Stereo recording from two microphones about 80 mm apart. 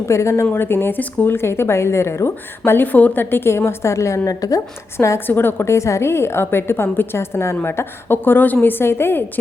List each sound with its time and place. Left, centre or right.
0.1 s a woman's voice: left
4.9 s a woman's voice: left